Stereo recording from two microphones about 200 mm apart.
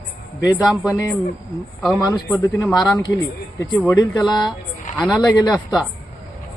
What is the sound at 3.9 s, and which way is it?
Speech, 20° left (ahead or behind).